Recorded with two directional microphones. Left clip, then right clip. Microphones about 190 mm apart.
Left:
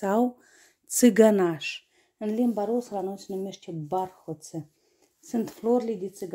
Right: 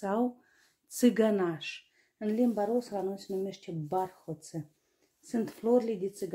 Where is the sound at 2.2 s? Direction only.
35° left (ahead or behind).